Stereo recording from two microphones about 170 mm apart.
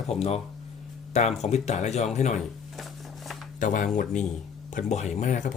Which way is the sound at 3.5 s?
50° left (ahead or behind).